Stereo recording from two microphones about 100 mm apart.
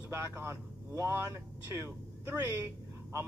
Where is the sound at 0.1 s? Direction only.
25° right (ahead or behind).